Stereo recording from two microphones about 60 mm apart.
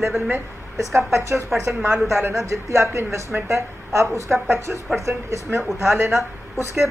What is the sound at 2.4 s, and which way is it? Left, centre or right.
A woman's voice, right.